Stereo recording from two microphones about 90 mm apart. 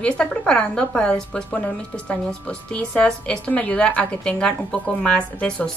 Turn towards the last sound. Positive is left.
turn(degrees=10)  # may be behind; listen again after turning